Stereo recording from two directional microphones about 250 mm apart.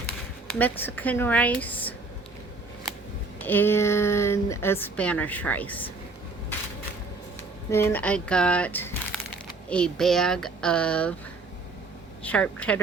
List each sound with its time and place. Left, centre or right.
0.6 s speech: centre
3.4 s speech: centre
7.7 s speech: centre
12.2 s speech: centre